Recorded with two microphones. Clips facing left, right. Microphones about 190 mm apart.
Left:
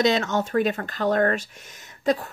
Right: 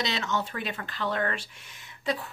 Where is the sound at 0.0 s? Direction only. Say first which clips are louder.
Left 9 dB; 50° left (ahead or behind).